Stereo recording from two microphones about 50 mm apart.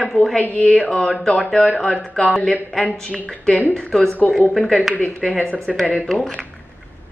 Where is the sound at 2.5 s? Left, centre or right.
Centre.